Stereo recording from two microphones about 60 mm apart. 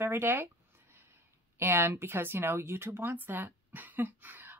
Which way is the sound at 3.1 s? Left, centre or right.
Right.